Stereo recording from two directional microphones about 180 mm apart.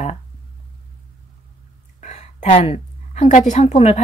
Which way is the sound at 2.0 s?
40° left (ahead or behind).